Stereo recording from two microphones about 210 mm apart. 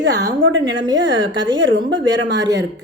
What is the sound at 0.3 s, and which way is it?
A woman's voice, 65° right (ahead or behind).